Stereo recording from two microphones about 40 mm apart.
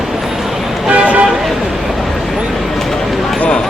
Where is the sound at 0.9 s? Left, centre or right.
Right.